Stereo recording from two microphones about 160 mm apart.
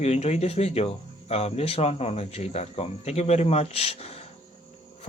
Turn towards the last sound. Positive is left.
turn(degrees=40)  # may be behind; listen again after turning